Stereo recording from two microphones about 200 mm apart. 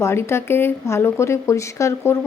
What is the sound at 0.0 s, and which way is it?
Speech, 10° left (ahead or behind).